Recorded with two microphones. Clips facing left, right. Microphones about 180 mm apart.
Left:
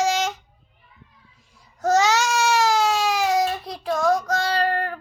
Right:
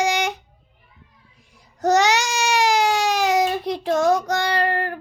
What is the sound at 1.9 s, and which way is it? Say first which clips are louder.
Baby cry: right 1 dB; 15° right (ahead or behind).